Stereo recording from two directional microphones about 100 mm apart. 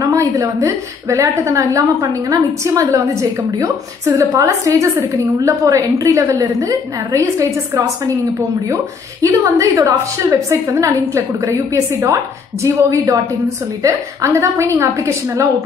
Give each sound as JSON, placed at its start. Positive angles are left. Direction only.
{"t": 0.0, "sound": "a sound", "side_deg": -35}
{"t": 0.6, "sound": "a woman's voice", "side_deg": -30}
{"t": 9.2, "sound": "a woman's voice", "side_deg": -35}